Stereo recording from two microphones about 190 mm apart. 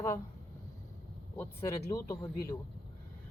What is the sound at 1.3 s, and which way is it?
Speech, 15° left (ahead or behind).